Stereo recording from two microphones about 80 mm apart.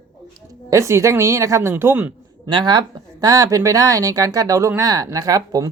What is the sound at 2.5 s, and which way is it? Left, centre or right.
Speech, right.